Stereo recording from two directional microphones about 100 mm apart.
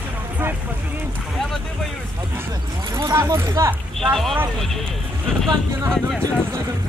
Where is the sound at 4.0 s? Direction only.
Centre (ahead or behind).